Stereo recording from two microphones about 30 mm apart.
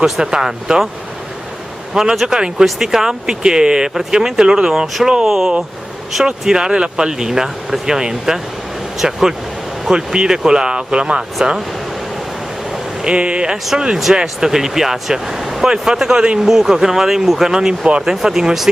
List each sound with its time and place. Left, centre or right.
0.0 s speech: right
2.2 s speech: right
2.6 s speech: centre
6.5 s speech: right
9.9 s speech: right
13.0 s speech: right
13.7 s speech: right
15.6 s speech: centre
17.6 s speech: right